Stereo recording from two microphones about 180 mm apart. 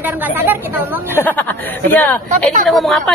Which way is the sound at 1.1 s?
10° left (ahead or behind).